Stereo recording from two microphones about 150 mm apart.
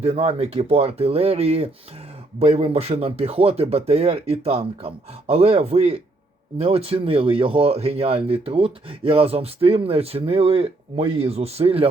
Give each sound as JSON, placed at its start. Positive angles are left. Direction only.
{"t": 0.0, "sound": "speech", "side_deg": -40}